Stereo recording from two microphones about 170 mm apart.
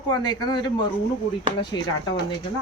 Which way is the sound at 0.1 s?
25° left (ahead or behind).